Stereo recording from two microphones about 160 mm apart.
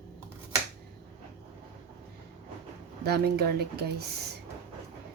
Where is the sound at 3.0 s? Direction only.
85° right.